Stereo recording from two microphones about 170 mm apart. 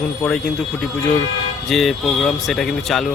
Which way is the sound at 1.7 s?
Centre (ahead or behind).